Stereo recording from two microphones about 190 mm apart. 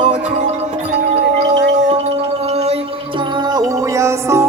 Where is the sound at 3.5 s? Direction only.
15° right (ahead or behind).